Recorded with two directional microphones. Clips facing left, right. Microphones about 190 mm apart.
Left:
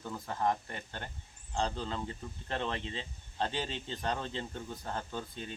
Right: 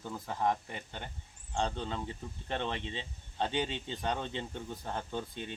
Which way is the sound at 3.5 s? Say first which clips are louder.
Right 3 dB; 15° right (ahead or behind).